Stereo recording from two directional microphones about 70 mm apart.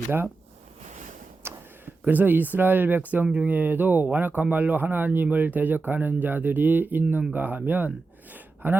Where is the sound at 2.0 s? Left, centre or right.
Right.